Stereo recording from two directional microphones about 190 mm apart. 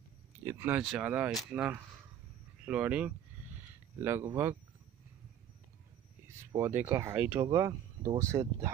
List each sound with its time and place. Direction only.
0.5 s speech: 10° right (ahead or behind)
6.5 s speech: 15° right (ahead or behind)